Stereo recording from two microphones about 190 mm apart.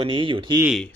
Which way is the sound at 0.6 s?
5° right (ahead or behind).